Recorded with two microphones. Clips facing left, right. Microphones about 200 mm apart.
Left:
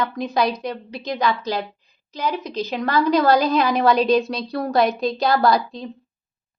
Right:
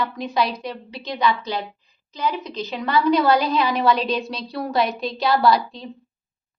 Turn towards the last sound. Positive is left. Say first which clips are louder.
# even
turn(degrees=45)  # may be behind; listen again after turning